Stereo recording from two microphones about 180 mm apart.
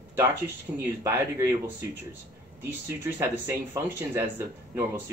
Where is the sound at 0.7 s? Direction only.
20° right (ahead or behind).